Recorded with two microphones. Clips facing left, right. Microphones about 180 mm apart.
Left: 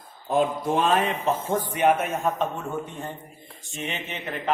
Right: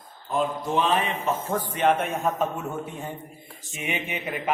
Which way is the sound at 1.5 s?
15° left (ahead or behind).